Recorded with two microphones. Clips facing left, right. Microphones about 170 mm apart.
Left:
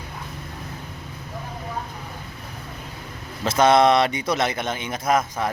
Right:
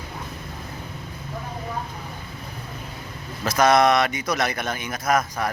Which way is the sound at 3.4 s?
25° left (ahead or behind).